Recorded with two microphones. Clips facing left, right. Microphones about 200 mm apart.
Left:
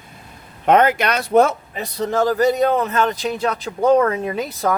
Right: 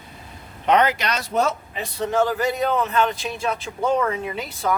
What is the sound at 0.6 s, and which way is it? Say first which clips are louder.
Speech: left 4 dB; 50° left (ahead or behind).